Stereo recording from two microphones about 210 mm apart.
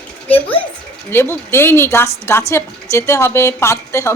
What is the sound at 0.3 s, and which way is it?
Speech, 10° left (ahead or behind).